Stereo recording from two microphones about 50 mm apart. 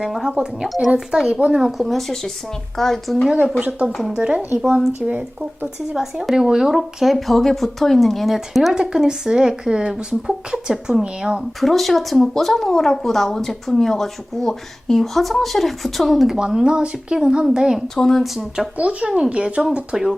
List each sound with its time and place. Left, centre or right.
0.0 s speech: centre
1.3 s speech: right
1.5 s speech: centre
3.6 s speech: right
3.8 s speech: centre
4.2 s speech: centre
6.0 s speech: centre
8.7 s speech: centre
11.6 s speech: centre
17.8 s speech: centre
18.2 s speech: centre
18.8 s speech: right
19.9 s speech: centre